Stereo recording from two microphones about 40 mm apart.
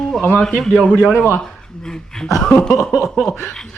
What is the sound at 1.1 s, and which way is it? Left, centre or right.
Speech, left.